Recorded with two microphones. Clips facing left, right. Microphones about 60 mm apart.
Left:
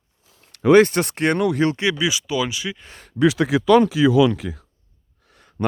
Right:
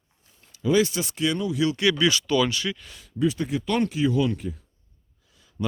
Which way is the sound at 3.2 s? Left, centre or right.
Left.